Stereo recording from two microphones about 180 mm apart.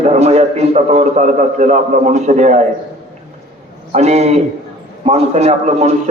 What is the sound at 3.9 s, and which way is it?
A man's voice, 35° right (ahead or behind).